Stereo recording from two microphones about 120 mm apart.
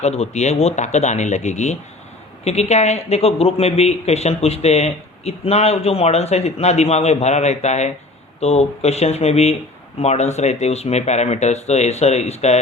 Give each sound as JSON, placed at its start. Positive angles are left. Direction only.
{"t": 0.0, "sound": "speech", "side_deg": 65}
{"t": 2.4, "sound": "speech", "side_deg": 65}
{"t": 8.4, "sound": "speech", "side_deg": 60}